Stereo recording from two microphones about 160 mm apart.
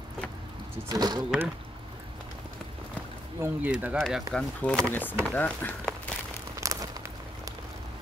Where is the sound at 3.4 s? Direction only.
10° right (ahead or behind).